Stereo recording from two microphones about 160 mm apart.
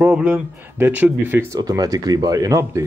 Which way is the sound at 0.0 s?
10° right (ahead or behind).